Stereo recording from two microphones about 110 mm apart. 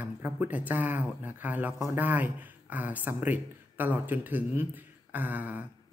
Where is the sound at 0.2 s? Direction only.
15° right (ahead or behind).